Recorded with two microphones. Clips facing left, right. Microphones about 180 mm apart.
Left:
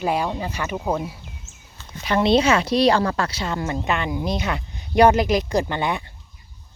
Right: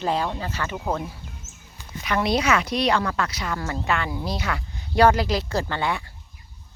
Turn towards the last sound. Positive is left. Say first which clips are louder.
# left 3 dB
turn(degrees=20)  # may be behind; listen again after turning